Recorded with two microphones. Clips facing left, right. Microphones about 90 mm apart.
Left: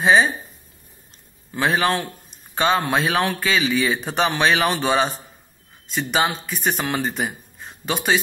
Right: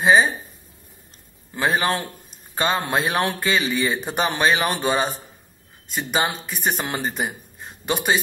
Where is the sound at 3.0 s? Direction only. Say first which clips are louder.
Left 1 dB; 15° right (ahead or behind).